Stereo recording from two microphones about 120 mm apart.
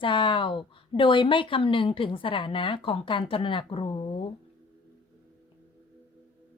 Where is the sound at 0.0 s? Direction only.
45° left (ahead or behind).